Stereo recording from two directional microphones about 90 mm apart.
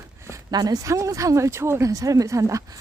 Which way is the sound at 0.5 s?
45° right (ahead or behind).